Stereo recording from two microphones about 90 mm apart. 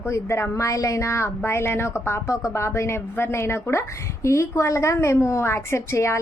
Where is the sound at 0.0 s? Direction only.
30° left (ahead or behind).